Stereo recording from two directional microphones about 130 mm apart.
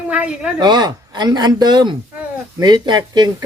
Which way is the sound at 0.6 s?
35° right (ahead or behind).